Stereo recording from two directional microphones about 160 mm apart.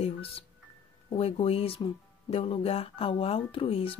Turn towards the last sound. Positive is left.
turn(degrees=35)  # may be behind; listen again after turning